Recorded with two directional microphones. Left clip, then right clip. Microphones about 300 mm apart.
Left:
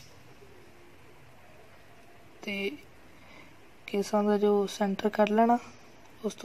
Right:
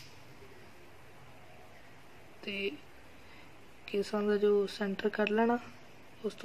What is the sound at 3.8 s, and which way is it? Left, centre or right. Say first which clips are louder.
Speech: left 5 dB; centre.